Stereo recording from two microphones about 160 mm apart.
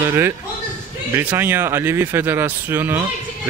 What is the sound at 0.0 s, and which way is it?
Speech, 15° right (ahead or behind).